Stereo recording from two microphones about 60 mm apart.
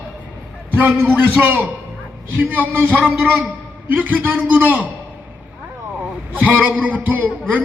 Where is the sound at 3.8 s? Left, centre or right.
Right.